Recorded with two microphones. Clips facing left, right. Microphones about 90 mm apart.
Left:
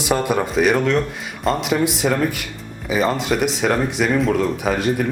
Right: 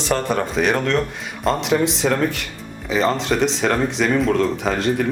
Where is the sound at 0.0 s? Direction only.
10° left (ahead or behind).